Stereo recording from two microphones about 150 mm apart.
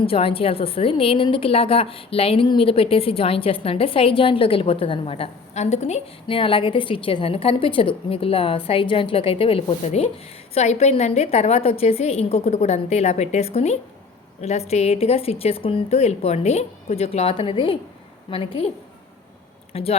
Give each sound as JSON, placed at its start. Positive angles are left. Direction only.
{"t": 0.0, "sound": "a woman's voice", "side_deg": 40}
{"t": 19.7, "sound": "a woman's voice", "side_deg": 40}